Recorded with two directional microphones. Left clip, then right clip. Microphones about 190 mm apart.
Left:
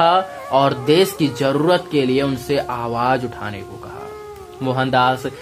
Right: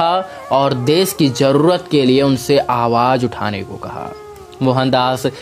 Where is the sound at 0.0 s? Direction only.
45° right (ahead or behind).